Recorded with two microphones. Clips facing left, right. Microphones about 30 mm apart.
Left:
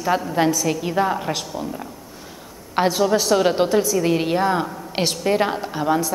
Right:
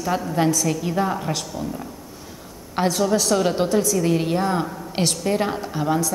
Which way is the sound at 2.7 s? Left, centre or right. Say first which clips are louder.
Left 2 dB; centre.